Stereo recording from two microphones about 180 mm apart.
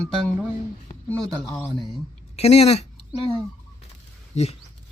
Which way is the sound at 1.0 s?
10° left (ahead or behind).